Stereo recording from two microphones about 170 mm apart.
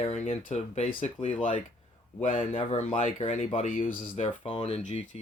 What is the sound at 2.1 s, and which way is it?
Speech, 45° left (ahead or behind).